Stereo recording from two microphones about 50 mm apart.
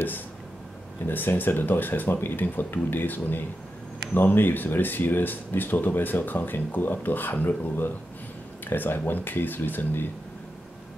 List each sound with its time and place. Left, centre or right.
1.0 s speech: left